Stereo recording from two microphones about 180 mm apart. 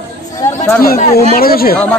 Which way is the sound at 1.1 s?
55° left (ahead or behind).